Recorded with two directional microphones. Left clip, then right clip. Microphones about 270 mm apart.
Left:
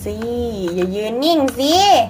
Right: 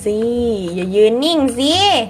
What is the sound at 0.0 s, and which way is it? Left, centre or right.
A child's voice, right.